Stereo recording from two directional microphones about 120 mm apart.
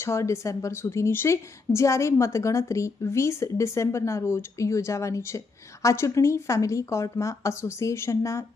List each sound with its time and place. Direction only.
0.0 s a woman's voice: 25° left (ahead or behind)